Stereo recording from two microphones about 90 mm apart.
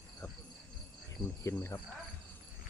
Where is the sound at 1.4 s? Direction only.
30° left (ahead or behind).